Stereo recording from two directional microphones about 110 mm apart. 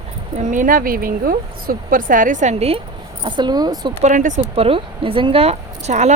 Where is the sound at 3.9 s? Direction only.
65° right (ahead or behind); by 6.1 s 90° right.